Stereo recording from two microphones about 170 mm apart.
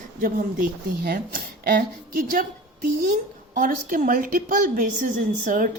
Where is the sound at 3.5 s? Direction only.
55° right (ahead or behind).